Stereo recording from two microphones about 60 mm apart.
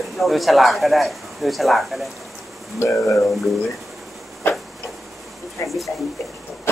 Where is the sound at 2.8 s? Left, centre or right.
Left.